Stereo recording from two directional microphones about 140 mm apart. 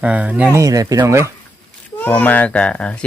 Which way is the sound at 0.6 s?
25° right (ahead or behind).